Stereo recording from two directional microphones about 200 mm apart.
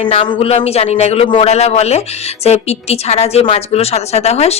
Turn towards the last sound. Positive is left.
turn(degrees=30)  # may be behind; listen again after turning